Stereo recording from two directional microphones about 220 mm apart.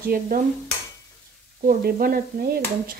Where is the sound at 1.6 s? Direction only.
45° right (ahead or behind).